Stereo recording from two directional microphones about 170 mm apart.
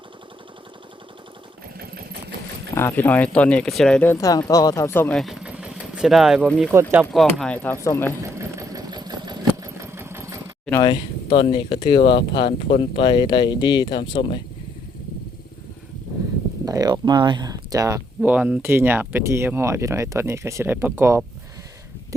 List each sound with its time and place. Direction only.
2.7 s speech: 15° left (ahead or behind); by 7.1 s 10° right (ahead or behind)
7.1 s speech: centre (ahead or behind)
8.2 s engine: 20° right (ahead or behind)
10.7 s speech: 25° left (ahead or behind)
16.6 s speech: 20° right (ahead or behind)
18.2 s speech: 10° right (ahead or behind)